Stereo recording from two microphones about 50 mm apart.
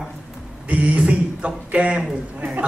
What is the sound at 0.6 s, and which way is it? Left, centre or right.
A man's voice, right.